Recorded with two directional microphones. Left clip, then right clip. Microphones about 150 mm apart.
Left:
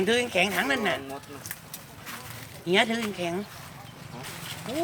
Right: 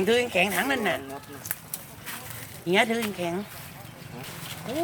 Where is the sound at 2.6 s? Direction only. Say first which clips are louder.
Right 1 dB; 20° right (ahead or behind).